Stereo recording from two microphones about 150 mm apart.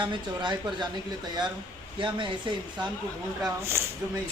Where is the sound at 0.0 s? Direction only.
30° right (ahead or behind).